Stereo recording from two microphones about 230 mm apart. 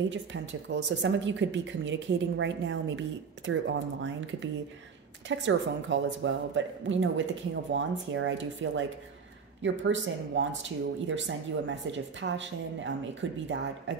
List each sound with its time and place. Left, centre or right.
0.1 s speech: right